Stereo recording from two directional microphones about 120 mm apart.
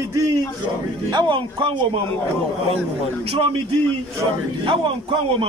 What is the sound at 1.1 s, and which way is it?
Speech, 40° right (ahead or behind).